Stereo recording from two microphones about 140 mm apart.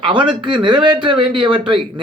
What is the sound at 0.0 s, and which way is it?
Speech, 35° right (ahead or behind).